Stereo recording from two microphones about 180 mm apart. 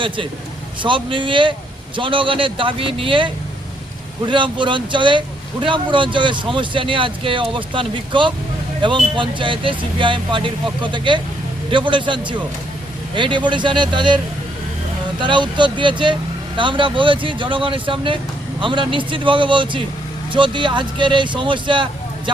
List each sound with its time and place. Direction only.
0.8 s speech: 25° right (ahead or behind)
15.2 s speech: 25° right (ahead or behind)